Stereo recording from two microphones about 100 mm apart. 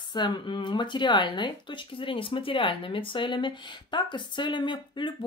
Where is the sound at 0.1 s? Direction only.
50° left (ahead or behind).